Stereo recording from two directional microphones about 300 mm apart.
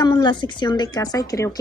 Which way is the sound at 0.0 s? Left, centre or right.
Centre.